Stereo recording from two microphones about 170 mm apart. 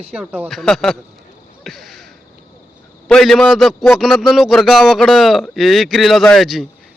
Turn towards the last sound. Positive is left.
turn(degrees=0)  # may be behind; listen again after turning